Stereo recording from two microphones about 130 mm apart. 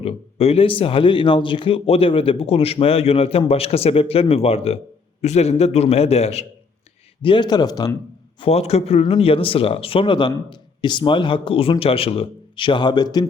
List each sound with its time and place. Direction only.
0.0 s a man's voice: 50° left (ahead or behind)
7.2 s a man's voice: 40° left (ahead or behind)
8.4 s a man's voice: 50° left (ahead or behind); by 13.2 s 30° left (ahead or behind)